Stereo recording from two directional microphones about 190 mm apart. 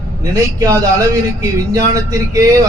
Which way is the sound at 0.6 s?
15° right (ahead or behind).